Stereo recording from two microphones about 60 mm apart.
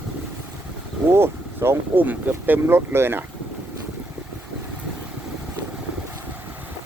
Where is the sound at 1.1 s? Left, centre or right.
Right.